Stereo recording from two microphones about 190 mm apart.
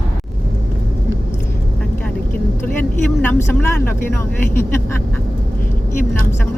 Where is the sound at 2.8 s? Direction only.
10° left (ahead or behind).